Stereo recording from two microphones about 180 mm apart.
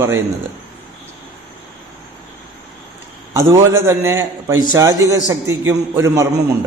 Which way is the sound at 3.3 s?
20° right (ahead or behind).